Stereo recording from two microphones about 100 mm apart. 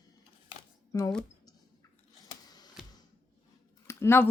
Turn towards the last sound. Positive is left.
turn(degrees=25)  # may be behind; listen again after turning